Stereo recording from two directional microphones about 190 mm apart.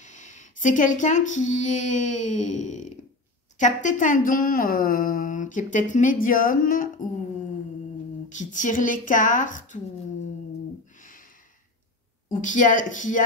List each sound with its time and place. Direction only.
0.0 s a woman's voice: 40° left (ahead or behind)
8.3 s a woman's voice: 40° left (ahead or behind)
11.0 s a sound: 45° left (ahead or behind)
12.3 s a woman's voice: 40° left (ahead or behind)